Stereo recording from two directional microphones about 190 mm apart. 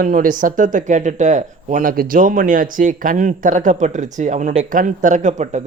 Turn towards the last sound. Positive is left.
turn(degrees=-40)  # may be behind; listen again after turning